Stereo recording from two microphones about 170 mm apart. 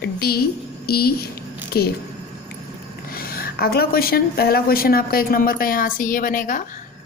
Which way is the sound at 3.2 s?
60° left (ahead or behind).